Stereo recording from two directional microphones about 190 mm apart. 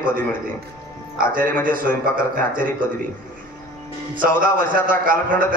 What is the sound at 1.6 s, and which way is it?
A man's voice, 45° right (ahead or behind).